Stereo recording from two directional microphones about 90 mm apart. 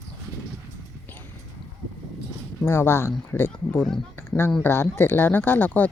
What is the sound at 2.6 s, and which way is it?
Speech, 25° left (ahead or behind).